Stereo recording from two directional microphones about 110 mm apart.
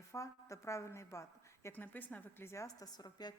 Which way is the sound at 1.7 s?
15° left (ahead or behind).